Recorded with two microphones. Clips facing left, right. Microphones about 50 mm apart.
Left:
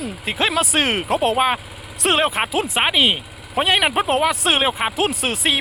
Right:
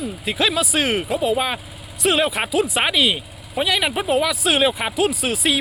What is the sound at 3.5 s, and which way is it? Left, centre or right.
Speech, left.